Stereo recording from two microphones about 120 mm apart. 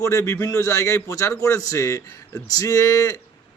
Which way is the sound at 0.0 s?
25° left (ahead or behind).